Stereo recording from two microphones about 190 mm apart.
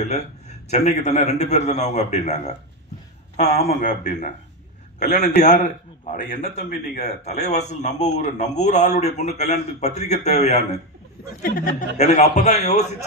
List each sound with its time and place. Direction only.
0.0 s a man's voice: 35° left (ahead or behind)
3.5 s a man's voice: 50° left (ahead or behind)
7.3 s a man's voice: 35° left (ahead or behind)